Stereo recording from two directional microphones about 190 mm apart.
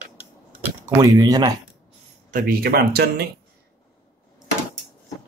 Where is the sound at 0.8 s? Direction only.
20° right (ahead or behind).